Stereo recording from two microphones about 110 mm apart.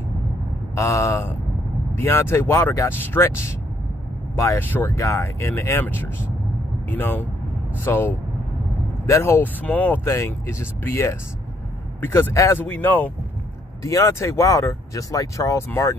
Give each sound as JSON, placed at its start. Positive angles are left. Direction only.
{"t": 0.7, "sound": "speech", "side_deg": 25}
{"t": 13.8, "sound": "speech", "side_deg": 30}